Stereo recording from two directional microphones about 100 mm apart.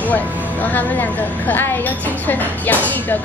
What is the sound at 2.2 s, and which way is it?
Speech, 15° left (ahead or behind).